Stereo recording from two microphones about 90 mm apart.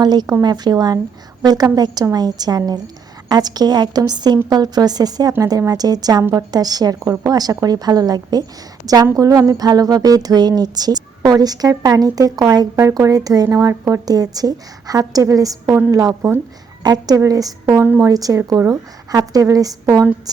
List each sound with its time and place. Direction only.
0.0 s a woman's voice: 50° right (ahead or behind)
16.8 s speech: 45° right (ahead or behind); by 18.1 s 30° right (ahead or behind)
18.1 s a woman's voice: 40° right (ahead or behind)